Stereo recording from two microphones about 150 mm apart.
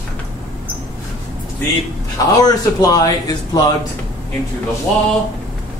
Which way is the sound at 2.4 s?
25° left (ahead or behind).